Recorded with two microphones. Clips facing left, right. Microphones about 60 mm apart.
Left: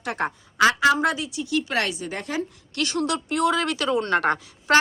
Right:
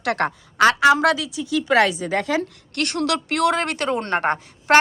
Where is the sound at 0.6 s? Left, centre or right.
Right.